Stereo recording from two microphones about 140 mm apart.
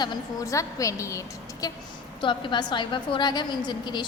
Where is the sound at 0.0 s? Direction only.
30° left (ahead or behind).